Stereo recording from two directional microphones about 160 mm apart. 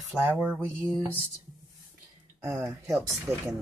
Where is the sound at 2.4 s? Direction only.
15° right (ahead or behind).